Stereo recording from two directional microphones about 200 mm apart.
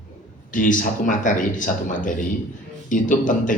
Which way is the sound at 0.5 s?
40° left (ahead or behind).